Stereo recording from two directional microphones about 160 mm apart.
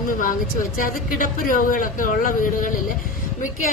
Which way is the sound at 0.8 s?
60° left (ahead or behind).